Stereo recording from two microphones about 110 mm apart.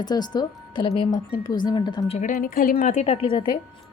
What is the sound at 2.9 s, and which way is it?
Speech, 75° left (ahead or behind).